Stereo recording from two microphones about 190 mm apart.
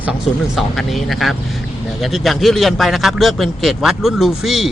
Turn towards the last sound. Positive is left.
turn(degrees=0)  # may be behind; listen again after turning